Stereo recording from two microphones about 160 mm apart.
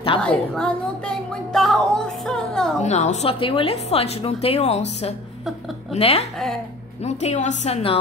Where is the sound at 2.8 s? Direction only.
45° left (ahead or behind).